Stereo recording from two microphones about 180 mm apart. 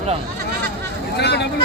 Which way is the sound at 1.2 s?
70° left (ahead or behind).